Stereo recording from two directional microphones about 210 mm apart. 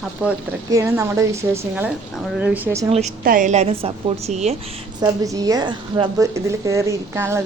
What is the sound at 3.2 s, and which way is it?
A woman's voice, 40° right (ahead or behind).